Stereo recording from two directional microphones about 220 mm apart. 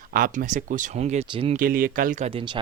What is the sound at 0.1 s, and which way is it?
Speech, 40° right (ahead or behind).